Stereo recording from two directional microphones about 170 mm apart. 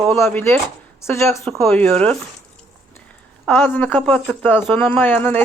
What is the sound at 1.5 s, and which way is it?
Speech, 5° left (ahead or behind).